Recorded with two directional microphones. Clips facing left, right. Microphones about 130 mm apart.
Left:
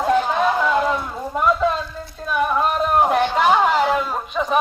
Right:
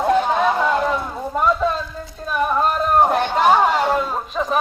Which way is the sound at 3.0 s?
35° right (ahead or behind).